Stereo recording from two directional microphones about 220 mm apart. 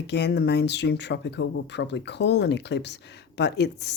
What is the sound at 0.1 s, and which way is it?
Speech, 50° left (ahead or behind).